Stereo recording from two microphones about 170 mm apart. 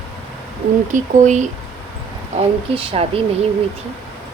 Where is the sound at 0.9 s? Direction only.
45° right (ahead or behind).